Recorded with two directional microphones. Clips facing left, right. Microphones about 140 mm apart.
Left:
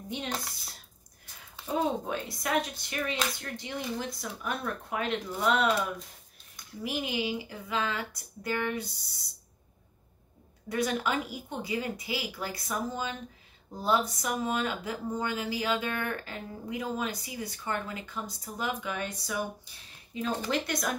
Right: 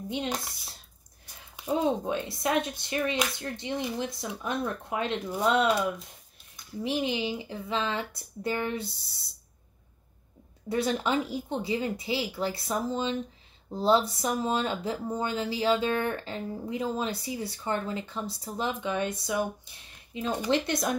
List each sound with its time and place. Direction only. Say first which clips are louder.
0.1 s speech: right 3 dB; 20° right (ahead or behind)
6.8 s speech: right 3 dB; 25° right (ahead or behind)
10.7 s speech: right 2 dB; 30° right (ahead or behind)